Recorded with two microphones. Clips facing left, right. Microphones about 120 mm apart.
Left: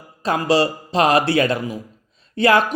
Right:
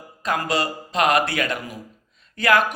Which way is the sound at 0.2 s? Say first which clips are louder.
Left 6 dB; 30° left (ahead or behind).